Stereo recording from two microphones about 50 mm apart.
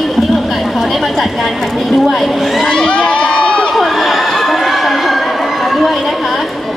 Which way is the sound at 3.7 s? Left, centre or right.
Centre.